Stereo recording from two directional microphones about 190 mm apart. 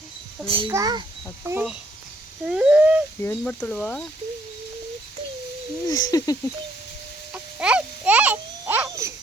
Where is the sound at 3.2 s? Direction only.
10° left (ahead or behind).